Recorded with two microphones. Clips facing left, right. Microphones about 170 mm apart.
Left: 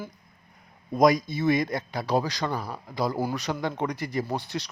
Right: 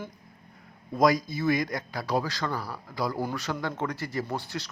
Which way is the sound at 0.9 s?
20° left (ahead or behind).